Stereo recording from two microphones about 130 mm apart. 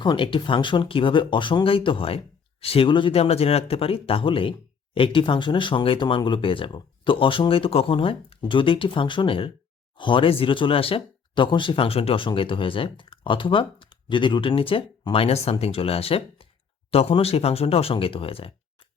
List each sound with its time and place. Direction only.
0.0 s speech: 40° left (ahead or behind)